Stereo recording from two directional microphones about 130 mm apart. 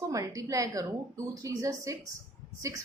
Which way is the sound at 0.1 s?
25° right (ahead or behind).